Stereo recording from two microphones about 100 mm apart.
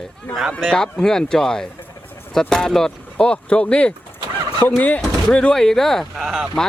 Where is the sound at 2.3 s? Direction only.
5° left (ahead or behind).